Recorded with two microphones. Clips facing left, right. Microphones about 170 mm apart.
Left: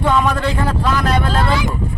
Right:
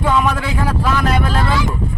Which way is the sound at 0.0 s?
5° right (ahead or behind).